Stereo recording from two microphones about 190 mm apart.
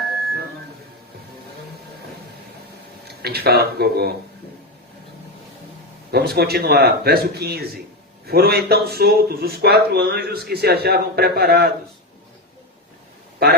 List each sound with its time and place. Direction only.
3.0 s speech: 55° right (ahead or behind)
6.1 s speech: 55° right (ahead or behind)